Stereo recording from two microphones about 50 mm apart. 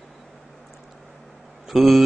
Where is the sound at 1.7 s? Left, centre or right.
Centre.